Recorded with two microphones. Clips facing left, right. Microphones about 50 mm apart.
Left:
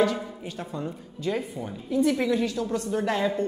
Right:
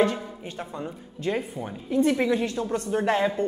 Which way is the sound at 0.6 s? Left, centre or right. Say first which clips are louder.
Left 1 dB; centre.